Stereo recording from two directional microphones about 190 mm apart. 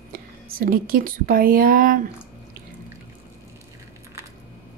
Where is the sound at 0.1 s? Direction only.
50° right (ahead or behind).